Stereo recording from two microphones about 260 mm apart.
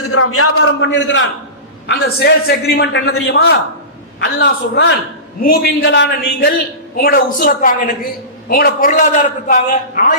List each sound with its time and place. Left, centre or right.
0.0 s a man's voice: left